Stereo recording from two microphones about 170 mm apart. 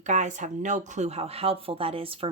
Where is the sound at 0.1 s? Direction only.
45° right (ahead or behind).